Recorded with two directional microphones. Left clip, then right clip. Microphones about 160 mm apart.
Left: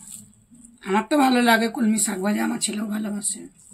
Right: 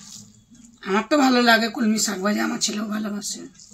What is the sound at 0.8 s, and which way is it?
Speech, 15° left (ahead or behind).